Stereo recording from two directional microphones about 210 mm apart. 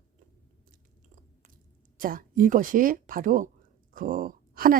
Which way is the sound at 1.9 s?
40° right (ahead or behind).